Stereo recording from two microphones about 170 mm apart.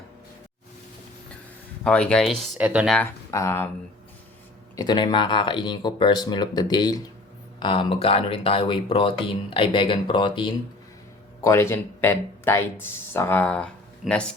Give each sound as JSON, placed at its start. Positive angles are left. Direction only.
{"t": 1.8, "sound": "speech", "side_deg": 5}
{"t": 3.3, "sound": "speech", "side_deg": 15}
{"t": 4.8, "sound": "speech", "side_deg": 25}
{"t": 11.4, "sound": "speech", "side_deg": 15}